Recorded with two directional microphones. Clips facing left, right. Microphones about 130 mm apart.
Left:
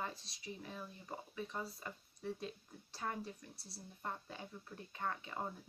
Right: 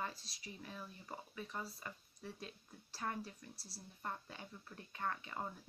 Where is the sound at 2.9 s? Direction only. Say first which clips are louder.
Left 1 dB; 20° left (ahead or behind).